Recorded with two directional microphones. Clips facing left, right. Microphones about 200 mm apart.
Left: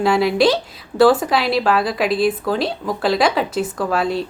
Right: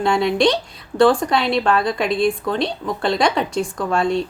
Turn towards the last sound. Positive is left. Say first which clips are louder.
# even
turn(degrees=5)  # may be behind; listen again after turning